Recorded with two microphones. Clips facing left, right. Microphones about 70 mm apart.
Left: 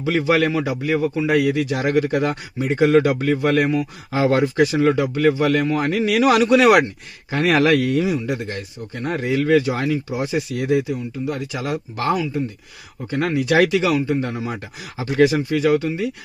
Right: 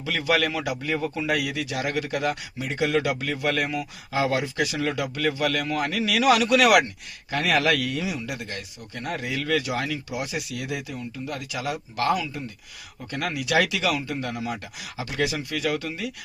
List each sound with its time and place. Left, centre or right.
0.0 s speech: left
0.8 s speech: centre
1.5 s speech: left
10.8 s speech: left
11.5 s speech: left
12.0 s speech: left